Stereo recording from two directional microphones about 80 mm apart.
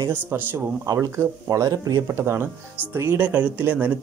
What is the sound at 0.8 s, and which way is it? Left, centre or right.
Speech, right.